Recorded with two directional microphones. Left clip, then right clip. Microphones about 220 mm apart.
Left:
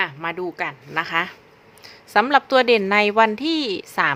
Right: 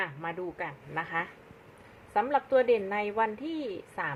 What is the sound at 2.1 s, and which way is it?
A woman's voice, 45° left (ahead or behind).